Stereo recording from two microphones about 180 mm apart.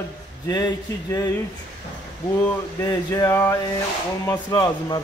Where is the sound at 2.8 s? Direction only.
15° left (ahead or behind).